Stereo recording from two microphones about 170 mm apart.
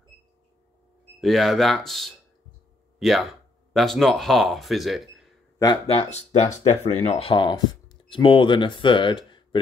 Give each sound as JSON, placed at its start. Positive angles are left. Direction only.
{"t": 1.2, "sound": "speech", "side_deg": 0}
{"t": 5.9, "sound": "speech", "side_deg": 40}